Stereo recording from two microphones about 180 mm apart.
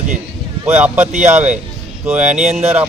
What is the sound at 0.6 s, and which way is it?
Speech, 10° right (ahead or behind).